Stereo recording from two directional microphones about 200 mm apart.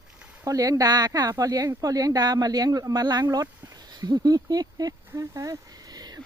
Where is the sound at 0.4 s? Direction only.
15° right (ahead or behind).